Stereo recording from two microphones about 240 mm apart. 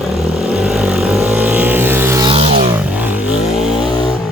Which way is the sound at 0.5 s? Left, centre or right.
Centre.